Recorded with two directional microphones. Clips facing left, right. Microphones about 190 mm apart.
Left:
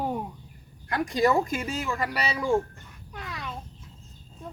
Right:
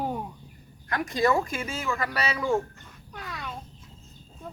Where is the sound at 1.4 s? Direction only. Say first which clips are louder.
Left 3 dB; 40° left (ahead or behind).